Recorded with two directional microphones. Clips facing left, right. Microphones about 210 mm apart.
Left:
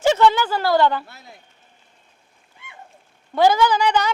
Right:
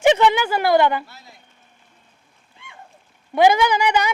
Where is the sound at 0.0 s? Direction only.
15° right (ahead or behind).